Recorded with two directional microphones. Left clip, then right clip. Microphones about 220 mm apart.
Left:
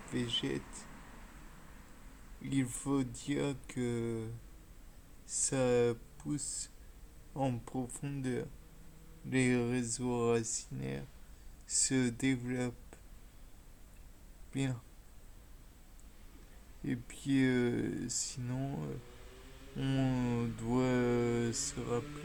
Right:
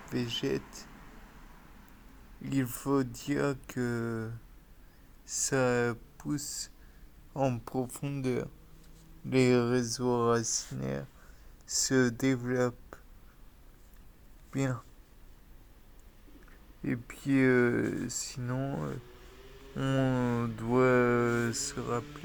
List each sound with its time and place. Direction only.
0.1 s speech: 30° right (ahead or behind)
2.5 s speech: 30° right (ahead or behind)
5.3 s speech: 30° right (ahead or behind)
11.6 s a sound: 5° right (ahead or behind)
11.9 s speech: 20° right (ahead or behind)
12.5 s a sound: 20° right (ahead or behind)
14.5 s speech: 20° right (ahead or behind)
16.8 s speech: 15° right (ahead or behind)